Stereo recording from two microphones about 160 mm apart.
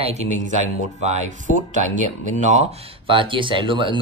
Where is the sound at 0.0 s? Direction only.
45° right (ahead or behind).